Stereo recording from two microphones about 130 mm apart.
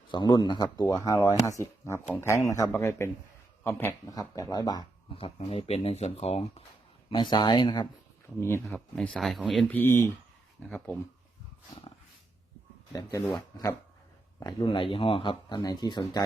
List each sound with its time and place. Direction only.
0.1 s a man's voice: 35° left (ahead or behind); by 4.1 s 15° left (ahead or behind)
4.1 s speech: 25° left (ahead or behind)
5.1 s speech: 45° left (ahead or behind)
7.1 s speech: 35° left (ahead or behind)
8.4 s speech: 20° left (ahead or behind)
8.6 s speech: 5° left (ahead or behind)
9.6 s a man's voice: 15° left (ahead or behind)
13.0 s speech: 25° left (ahead or behind)
14.6 s speech: 40° left (ahead or behind)